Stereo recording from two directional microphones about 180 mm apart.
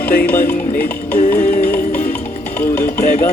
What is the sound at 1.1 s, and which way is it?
Music, 45° left (ahead or behind).